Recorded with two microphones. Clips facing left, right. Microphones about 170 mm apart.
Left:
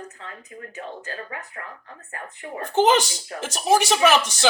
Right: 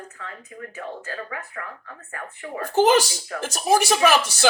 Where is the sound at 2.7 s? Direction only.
5° right (ahead or behind).